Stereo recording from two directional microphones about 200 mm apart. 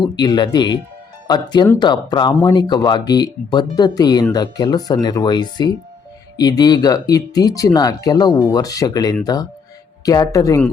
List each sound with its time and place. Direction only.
0.0 s speech: 20° left (ahead or behind)
1.8 s speech: 20° left (ahead or behind)